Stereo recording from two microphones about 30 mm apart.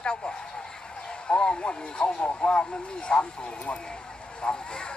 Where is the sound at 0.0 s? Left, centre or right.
Left.